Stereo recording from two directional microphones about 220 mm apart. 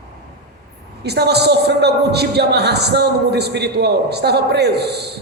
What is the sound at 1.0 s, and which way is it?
A man's voice, 50° right (ahead or behind).